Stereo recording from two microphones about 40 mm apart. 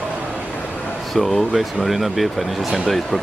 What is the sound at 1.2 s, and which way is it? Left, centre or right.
Speech, centre.